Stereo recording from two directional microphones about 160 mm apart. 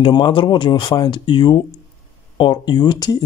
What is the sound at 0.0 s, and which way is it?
Speech, 30° left (ahead or behind).